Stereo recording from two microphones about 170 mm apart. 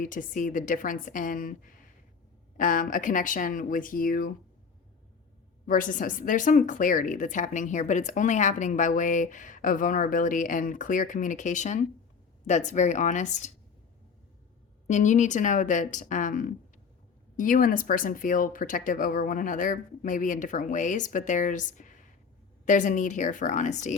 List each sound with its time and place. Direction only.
0.0 s speech: 50° left (ahead or behind)
2.6 s speech: 50° left (ahead or behind)
5.6 s speech: 50° left (ahead or behind)
14.8 s speech: 45° left (ahead or behind)